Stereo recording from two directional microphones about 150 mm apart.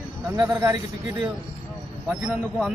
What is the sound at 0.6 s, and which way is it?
Speech, 20° right (ahead or behind).